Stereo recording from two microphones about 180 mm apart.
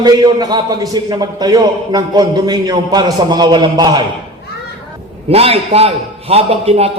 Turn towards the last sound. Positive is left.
turn(degrees=-35)  # may be behind; listen again after turning